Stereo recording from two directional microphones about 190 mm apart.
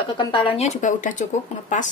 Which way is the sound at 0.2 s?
25° left (ahead or behind).